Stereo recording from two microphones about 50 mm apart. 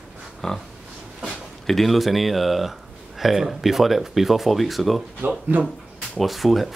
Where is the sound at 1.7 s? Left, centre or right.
Centre.